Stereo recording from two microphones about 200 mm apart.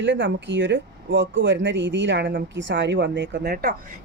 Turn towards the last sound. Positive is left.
turn(degrees=-50)  # may be behind; listen again after turning